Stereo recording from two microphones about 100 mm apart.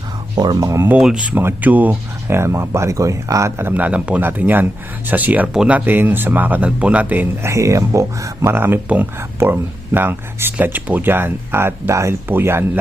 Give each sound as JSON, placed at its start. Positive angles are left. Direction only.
{"t": 0.3, "sound": "speech", "side_deg": -40}
{"t": 1.0, "sound": "speech", "side_deg": -10}
{"t": 2.2, "sound": "speech", "side_deg": -25}
{"t": 7.5, "sound": "speech", "side_deg": -30}